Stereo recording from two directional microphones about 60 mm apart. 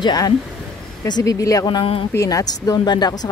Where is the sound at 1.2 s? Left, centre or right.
Left.